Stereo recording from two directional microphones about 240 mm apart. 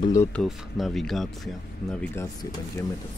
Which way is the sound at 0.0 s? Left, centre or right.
Centre.